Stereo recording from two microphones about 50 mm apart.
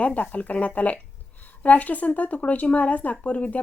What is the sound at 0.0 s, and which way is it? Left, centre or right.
A woman's voice, left.